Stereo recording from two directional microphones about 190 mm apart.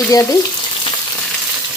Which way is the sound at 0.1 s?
20° left (ahead or behind).